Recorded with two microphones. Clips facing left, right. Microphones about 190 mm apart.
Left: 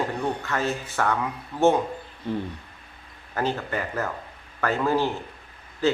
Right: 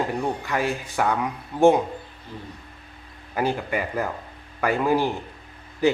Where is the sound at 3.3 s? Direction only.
10° right (ahead or behind).